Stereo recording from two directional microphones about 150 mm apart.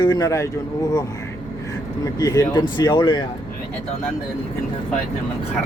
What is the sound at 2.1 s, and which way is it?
Speech, 20° left (ahead or behind).